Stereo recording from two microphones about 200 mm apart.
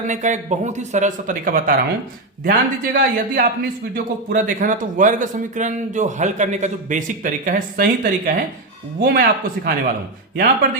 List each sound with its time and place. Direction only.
0.1 s a man's voice: 35° right (ahead or behind)